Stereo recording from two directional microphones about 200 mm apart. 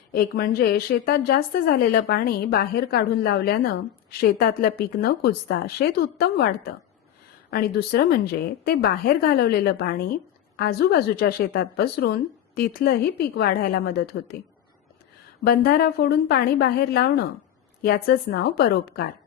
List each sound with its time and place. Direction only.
0.1 s a woman's voice: 50° left (ahead or behind)
15.4 s a woman's voice: 50° left (ahead or behind)